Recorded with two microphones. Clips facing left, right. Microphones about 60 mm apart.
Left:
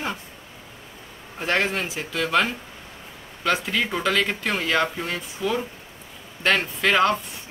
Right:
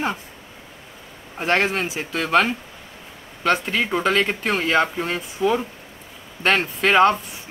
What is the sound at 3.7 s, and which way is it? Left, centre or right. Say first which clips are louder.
Speech: right 3 dB; right.